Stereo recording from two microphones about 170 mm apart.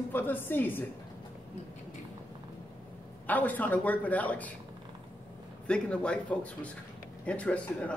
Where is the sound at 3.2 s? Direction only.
10° left (ahead or behind).